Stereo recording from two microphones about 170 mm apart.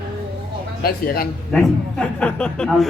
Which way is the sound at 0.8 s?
65° left (ahead or behind).